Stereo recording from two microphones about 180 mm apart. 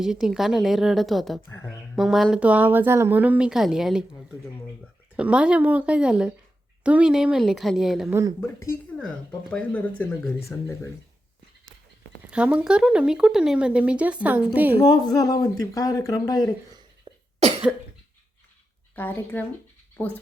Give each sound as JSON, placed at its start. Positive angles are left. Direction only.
{"t": 0.0, "sound": "speech", "side_deg": -5}
{"t": 1.5, "sound": "speech", "side_deg": 15}
{"t": 2.0, "sound": "a woman's voice", "side_deg": 0}
{"t": 8.4, "sound": "speech", "side_deg": 10}
{"t": 12.3, "sound": "speech", "side_deg": -5}
{"t": 14.8, "sound": "speech", "side_deg": 20}
{"t": 17.1, "sound": "cough", "side_deg": -25}
{"t": 18.9, "sound": "speech", "side_deg": 10}